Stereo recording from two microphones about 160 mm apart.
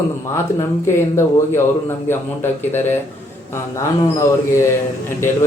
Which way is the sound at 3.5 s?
20° left (ahead or behind).